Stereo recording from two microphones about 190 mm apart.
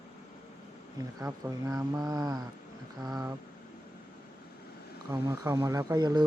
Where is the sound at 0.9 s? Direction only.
15° right (ahead or behind).